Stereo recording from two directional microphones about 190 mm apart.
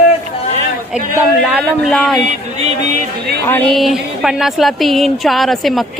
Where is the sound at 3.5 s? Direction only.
5° left (ahead or behind).